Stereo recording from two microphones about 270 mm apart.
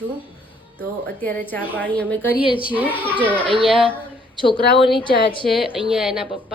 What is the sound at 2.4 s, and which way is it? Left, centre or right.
Speech, centre.